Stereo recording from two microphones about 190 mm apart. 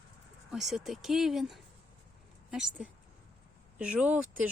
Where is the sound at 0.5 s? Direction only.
Centre (ahead or behind).